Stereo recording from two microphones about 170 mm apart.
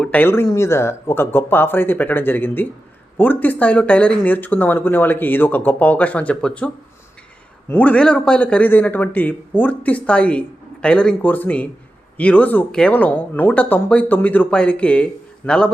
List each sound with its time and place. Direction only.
0.0 s speech: 10° left (ahead or behind)
7.7 s speech: 10° left (ahead or behind)